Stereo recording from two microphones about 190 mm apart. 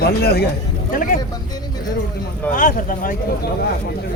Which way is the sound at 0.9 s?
45° left (ahead or behind).